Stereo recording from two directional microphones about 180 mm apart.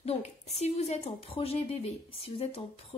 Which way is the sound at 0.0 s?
35° left (ahead or behind).